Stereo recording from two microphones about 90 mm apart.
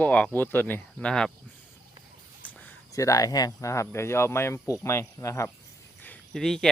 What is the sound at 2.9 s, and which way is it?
Speech, 40° left (ahead or behind).